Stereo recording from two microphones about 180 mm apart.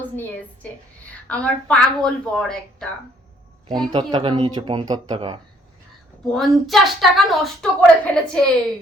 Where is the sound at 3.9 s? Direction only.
25° right (ahead or behind).